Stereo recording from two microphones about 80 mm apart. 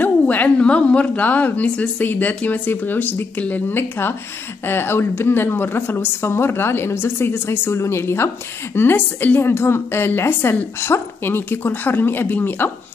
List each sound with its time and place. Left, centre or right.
0.0 s a woman's voice: left